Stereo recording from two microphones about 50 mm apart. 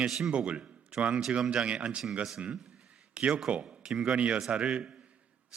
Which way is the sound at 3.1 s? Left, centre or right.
Right.